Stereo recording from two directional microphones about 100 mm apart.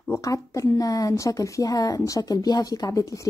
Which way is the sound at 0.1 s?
35° left (ahead or behind).